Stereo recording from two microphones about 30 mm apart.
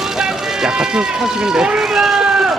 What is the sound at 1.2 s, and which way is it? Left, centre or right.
Speech, right.